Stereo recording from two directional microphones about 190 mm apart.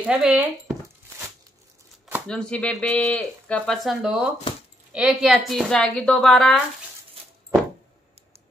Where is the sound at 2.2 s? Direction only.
5° left (ahead or behind).